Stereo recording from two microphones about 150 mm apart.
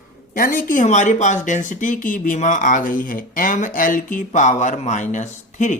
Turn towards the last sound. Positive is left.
turn(degrees=55)  # may be behind; listen again after turning